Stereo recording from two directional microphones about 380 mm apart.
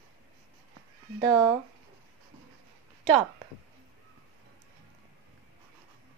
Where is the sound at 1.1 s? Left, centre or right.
Centre.